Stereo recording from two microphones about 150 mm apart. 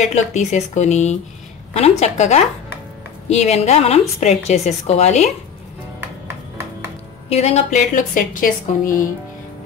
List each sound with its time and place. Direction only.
0.0 s speech: 50° left (ahead or behind)
7.2 s a woman's voice: 45° left (ahead or behind); by 9.0 s 65° left (ahead or behind)